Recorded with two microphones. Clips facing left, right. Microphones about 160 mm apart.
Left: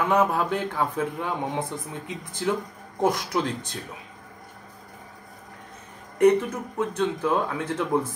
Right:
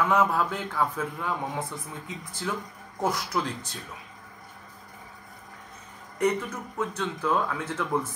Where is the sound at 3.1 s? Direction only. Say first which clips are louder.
Left 3 dB; 30° left (ahead or behind).